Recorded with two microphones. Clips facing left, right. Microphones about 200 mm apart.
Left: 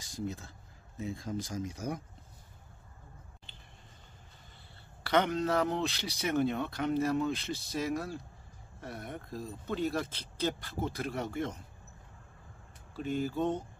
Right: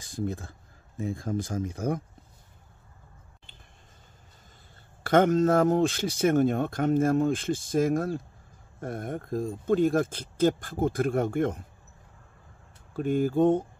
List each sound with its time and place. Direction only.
0.0 s speech: 50° right (ahead or behind)
5.0 s speech: 50° right (ahead or behind)
12.9 s speech: 50° right (ahead or behind)